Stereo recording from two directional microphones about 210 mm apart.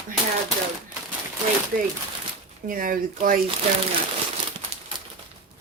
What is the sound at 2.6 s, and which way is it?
Speech, 40° right (ahead or behind).